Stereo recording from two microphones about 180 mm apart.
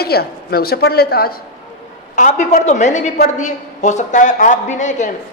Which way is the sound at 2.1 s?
45° left (ahead or behind).